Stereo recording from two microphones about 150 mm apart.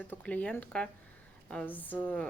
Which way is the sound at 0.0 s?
10° left (ahead or behind).